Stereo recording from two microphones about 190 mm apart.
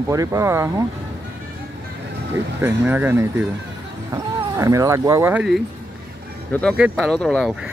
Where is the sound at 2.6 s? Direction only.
10° right (ahead or behind).